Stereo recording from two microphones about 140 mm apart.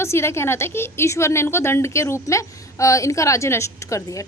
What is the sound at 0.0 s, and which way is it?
A woman's voice, 20° left (ahead or behind).